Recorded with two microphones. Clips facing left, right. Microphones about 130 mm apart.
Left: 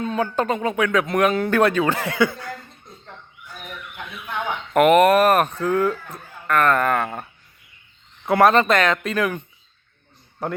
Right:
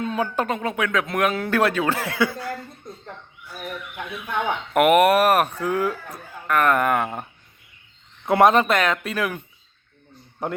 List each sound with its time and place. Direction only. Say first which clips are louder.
0.0 s speech: left 2 dB; 5° right (ahead or behind)
4.7 s speech: left 2 dB; 10° right (ahead or behind)
8.3 s speech: even; 20° right (ahead or behind)
8.5 s speech: left 2 dB; 10° right (ahead or behind)
10.4 s speech: left 1 dB; 20° right (ahead or behind)